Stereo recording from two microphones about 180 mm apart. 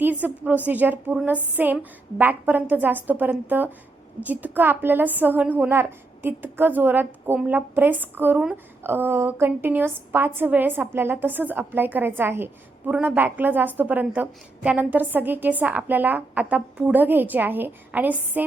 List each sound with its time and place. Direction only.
0.0 s a woman's voice: 10° right (ahead or behind)